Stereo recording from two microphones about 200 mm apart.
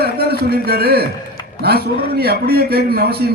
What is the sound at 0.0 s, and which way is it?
A man's voice, 50° right (ahead or behind).